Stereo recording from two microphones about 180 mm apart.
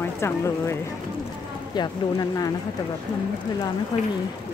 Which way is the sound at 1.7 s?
20° left (ahead or behind).